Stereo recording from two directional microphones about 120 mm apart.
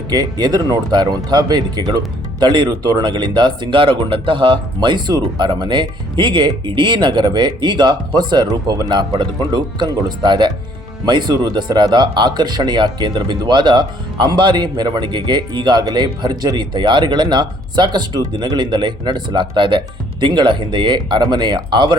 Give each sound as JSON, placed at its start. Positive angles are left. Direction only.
{"t": 0.1, "sound": "speech", "side_deg": -35}